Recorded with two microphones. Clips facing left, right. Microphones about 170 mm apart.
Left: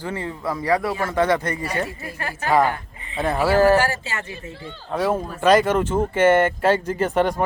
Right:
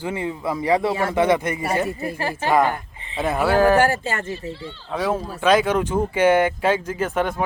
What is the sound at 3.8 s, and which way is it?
Speech, 55° right (ahead or behind).